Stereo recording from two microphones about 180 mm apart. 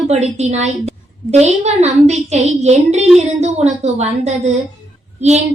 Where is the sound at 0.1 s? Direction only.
40° right (ahead or behind).